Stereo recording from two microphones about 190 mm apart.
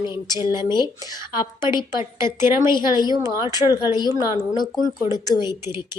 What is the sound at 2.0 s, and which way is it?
Speech, 15° right (ahead or behind).